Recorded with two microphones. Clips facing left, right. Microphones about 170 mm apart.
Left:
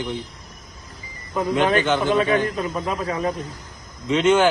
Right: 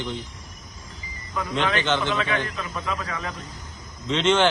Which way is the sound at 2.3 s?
45° left (ahead or behind).